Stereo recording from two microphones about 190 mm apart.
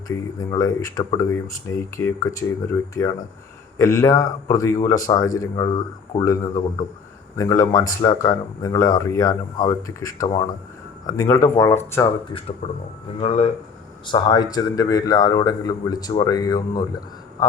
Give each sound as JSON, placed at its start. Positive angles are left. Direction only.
{"t": 0.5, "sound": "speech", "side_deg": 20}